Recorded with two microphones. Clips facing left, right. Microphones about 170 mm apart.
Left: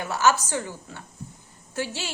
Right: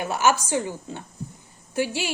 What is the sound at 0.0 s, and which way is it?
A woman's voice, 15° right (ahead or behind).